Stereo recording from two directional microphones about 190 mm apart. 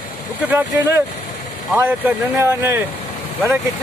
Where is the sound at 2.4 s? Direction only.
15° right (ahead or behind).